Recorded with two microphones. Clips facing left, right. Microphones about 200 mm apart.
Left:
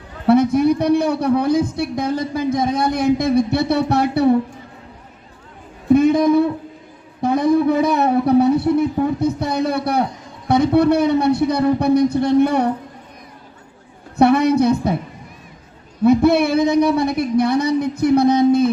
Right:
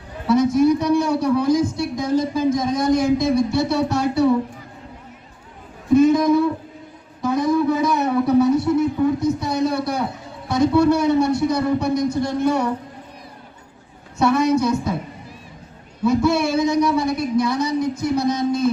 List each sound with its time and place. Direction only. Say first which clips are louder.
0.3 s a man's voice: left 2 dB; 60° left (ahead or behind)
5.9 s a sound: left 1 dB; 60° left (ahead or behind)
9.2 s a man's voice: left 1 dB; 60° left (ahead or behind)
14.2 s a man's voice: left 4 dB; 60° left (ahead or behind)
16.0 s a man's voice: left 4 dB; 60° left (ahead or behind)